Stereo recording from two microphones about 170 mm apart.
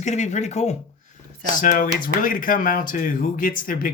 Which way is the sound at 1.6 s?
55° left (ahead or behind).